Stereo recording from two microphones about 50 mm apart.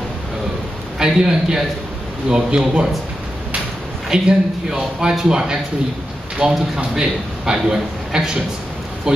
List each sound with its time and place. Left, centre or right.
0.9 s speech: centre
4.1 s speech: centre